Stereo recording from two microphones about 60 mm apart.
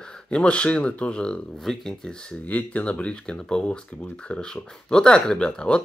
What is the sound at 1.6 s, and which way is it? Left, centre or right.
Speech, centre.